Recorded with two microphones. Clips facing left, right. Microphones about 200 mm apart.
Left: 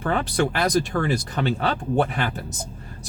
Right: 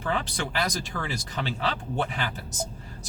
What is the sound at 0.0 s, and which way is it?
Speech, 55° left (ahead or behind).